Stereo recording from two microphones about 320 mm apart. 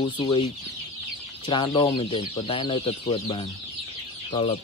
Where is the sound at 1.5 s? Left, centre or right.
Centre.